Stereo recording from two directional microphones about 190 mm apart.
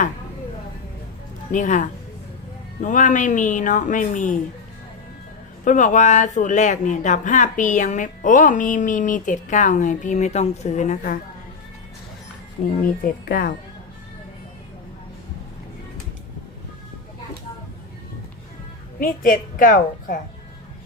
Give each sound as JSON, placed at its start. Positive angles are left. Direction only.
{"t": 1.5, "sound": "speech", "side_deg": 40}
{"t": 5.6, "sound": "speech", "side_deg": 40}
{"t": 12.8, "sound": "a woman's voice", "side_deg": 50}
{"t": 18.9, "sound": "a woman's voice", "side_deg": 45}